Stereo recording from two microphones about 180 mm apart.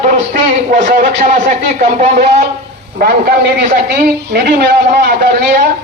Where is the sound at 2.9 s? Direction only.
55° right (ahead or behind).